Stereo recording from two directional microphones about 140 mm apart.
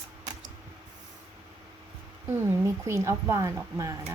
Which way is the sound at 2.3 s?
20° right (ahead or behind).